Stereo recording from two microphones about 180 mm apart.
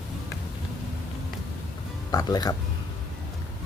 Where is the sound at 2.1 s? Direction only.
20° left (ahead or behind).